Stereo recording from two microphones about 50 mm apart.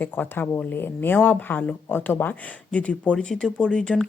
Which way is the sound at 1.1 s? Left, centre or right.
Left.